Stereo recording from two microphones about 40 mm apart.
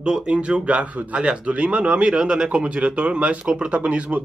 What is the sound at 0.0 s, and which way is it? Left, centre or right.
Speech, right.